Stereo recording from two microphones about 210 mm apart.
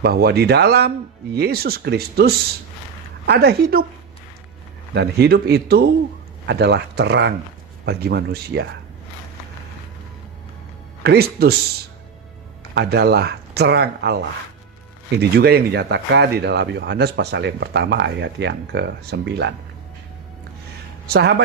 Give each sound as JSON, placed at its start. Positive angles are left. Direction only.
{"t": 0.0, "sound": "speech", "side_deg": -50}
{"t": 4.9, "sound": "speech", "side_deg": -50}
{"t": 11.0, "sound": "speech", "side_deg": -50}
{"t": 12.7, "sound": "speech", "side_deg": -50}
{"t": 21.1, "sound": "speech", "side_deg": -50}